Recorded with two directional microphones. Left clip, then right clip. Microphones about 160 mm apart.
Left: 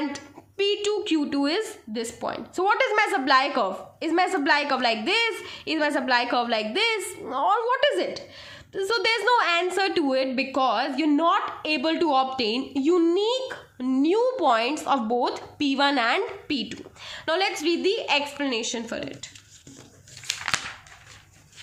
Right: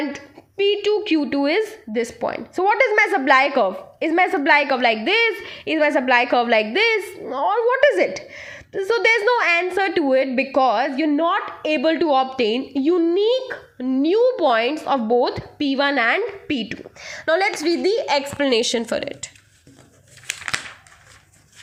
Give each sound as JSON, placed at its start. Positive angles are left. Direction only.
{"t": 0.5, "sound": "a woman's voice", "side_deg": -30}
{"t": 13.1, "sound": "a child's voice", "side_deg": -30}
{"t": 14.0, "sound": "a woman's voice", "side_deg": -15}